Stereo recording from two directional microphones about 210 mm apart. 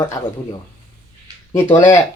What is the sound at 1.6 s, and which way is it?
Speech, 10° left (ahead or behind).